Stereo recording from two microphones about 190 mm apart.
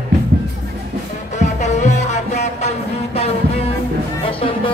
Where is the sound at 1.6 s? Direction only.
35° left (ahead or behind).